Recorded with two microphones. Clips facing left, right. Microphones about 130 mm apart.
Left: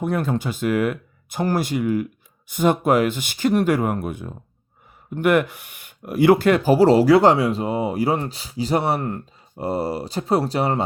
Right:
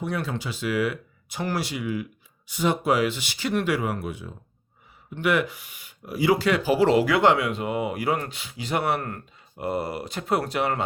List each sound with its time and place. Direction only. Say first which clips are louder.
0.0 s speech: left 6 dB; 50° left (ahead or behind); by 10.8 s 30° left (ahead or behind)